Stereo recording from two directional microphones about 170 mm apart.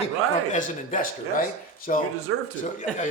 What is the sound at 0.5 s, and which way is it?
Speech, 50° left (ahead or behind).